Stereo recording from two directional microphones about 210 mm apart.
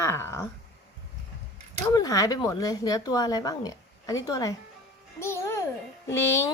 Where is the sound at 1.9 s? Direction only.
15° left (ahead or behind).